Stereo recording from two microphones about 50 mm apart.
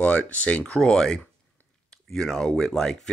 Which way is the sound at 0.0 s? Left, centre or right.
Left.